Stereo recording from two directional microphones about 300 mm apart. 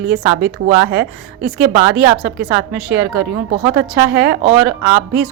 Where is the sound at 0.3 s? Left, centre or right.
Right.